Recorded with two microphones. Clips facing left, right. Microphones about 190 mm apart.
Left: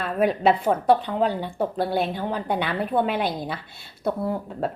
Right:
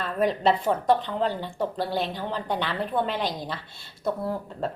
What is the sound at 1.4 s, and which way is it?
Speech, 55° left (ahead or behind).